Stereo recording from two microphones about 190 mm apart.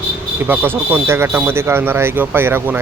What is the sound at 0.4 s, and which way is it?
Speech, 10° right (ahead or behind).